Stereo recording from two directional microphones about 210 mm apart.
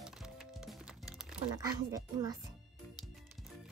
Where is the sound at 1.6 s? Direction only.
15° right (ahead or behind).